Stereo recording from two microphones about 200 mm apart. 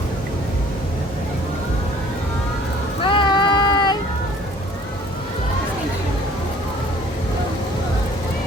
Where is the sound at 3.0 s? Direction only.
25° left (ahead or behind).